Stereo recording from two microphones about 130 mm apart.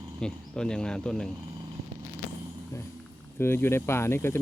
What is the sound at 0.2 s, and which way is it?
Speech, 5° left (ahead or behind).